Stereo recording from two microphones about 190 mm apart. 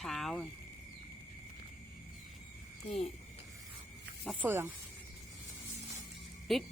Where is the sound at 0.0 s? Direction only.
Centre (ahead or behind).